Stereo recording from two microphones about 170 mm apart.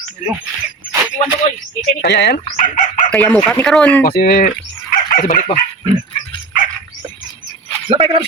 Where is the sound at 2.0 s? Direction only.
80° left.